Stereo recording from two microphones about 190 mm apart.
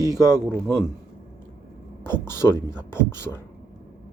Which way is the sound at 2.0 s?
10° left (ahead or behind).